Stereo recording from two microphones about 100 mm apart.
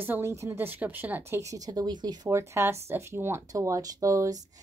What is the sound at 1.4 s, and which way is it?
Speech, 35° right (ahead or behind).